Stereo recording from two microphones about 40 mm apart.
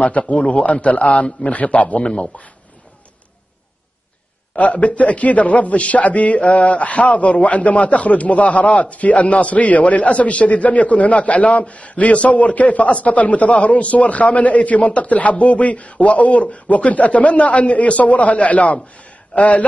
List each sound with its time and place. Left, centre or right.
0.3 s a man's voice: left
4.6 s a man's voice: left
18.9 s a sound: left